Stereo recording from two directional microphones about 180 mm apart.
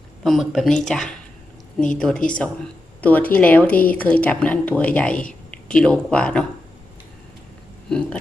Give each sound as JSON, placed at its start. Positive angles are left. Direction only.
{"t": 0.3, "sound": "a woman's voice", "side_deg": 0}
{"t": 7.9, "sound": "speech", "side_deg": 5}